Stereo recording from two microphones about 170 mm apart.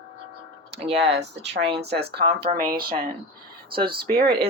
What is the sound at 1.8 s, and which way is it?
Speech, 75° right (ahead or behind).